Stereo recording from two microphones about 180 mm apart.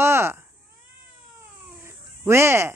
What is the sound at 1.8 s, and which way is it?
Fowl, 15° right (ahead or behind).